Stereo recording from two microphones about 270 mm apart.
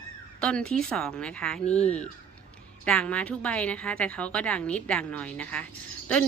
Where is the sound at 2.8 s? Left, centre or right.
Centre.